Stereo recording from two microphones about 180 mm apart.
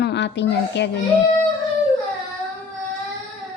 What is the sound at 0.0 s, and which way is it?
Speech, 70° left (ahead or behind).